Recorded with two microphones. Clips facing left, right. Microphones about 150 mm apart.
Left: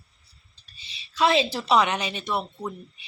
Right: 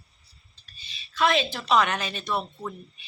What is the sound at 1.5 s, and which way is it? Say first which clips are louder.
Speech: left 2 dB; 30° left (ahead or behind).